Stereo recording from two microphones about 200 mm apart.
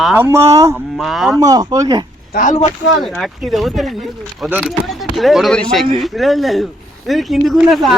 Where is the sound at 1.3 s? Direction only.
20° right (ahead or behind).